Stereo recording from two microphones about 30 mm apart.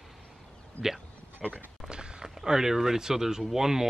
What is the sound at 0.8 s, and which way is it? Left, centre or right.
Speech, left.